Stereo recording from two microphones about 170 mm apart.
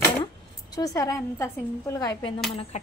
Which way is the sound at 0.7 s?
20° left (ahead or behind).